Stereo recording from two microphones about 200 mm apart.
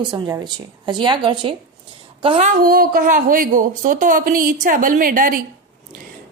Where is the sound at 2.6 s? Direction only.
45° right (ahead or behind).